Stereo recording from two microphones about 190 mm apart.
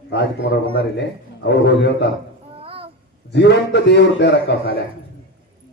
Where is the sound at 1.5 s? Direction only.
65° left (ahead or behind).